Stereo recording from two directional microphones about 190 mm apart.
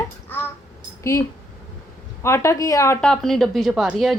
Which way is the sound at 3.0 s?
5° left (ahead or behind).